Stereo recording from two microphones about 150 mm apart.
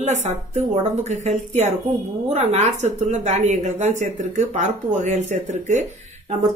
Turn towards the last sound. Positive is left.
turn(degrees=-50)  # may be behind; listen again after turning